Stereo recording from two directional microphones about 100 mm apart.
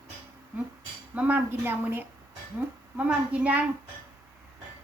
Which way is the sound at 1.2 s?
15° right (ahead or behind).